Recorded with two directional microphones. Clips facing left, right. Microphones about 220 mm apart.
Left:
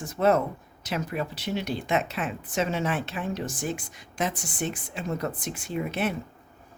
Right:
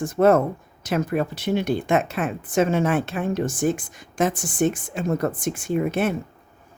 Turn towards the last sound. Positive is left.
turn(degrees=-50)  # may be behind; listen again after turning